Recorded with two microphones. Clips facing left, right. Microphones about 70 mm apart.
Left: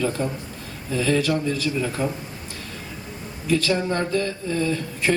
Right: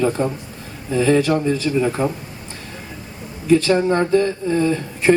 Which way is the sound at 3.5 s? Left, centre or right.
Right.